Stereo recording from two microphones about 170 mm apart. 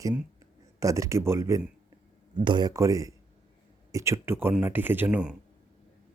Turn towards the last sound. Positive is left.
turn(degrees=-10)  # may be behind; listen again after turning